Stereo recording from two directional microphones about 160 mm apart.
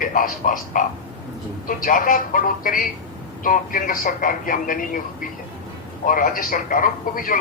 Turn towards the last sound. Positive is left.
turn(degrees=60)  # may be behind; listen again after turning